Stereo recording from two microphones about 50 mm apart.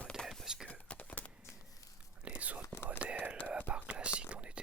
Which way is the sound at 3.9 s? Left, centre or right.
Right.